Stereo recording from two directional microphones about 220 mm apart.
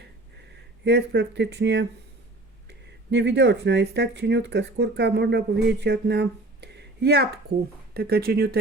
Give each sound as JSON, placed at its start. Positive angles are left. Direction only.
{"t": 0.9, "sound": "speech", "side_deg": -50}